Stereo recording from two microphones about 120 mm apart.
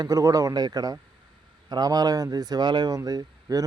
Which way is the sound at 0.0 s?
30° right (ahead or behind).